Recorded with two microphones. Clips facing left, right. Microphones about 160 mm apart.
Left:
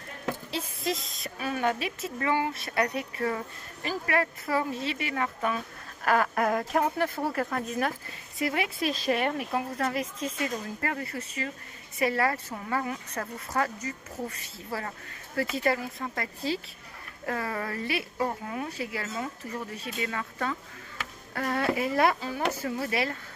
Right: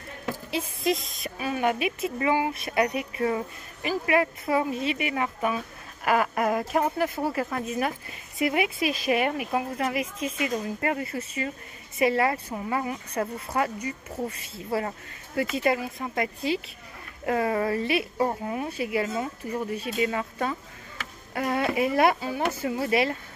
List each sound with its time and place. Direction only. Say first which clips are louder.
0.5 s a woman's voice: right 8 dB; 15° right (ahead or behind)
8.4 s a woman's voice: right 4 dB; 15° right (ahead or behind)